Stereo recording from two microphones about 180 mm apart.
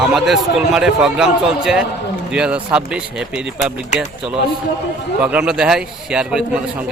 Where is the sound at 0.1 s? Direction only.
Centre (ahead or behind).